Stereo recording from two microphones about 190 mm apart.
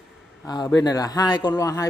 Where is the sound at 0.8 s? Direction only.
20° left (ahead or behind).